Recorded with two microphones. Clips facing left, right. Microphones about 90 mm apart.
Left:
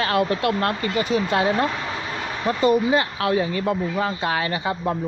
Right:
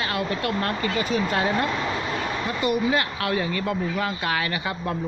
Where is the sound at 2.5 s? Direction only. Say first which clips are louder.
Left 6 dB; 30° left (ahead or behind).